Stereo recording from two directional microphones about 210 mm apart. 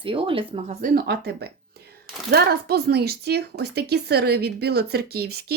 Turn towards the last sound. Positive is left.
turn(degrees=-50)  # may be behind; listen again after turning